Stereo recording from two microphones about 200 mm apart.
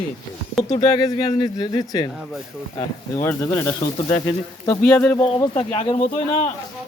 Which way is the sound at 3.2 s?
15° left (ahead or behind).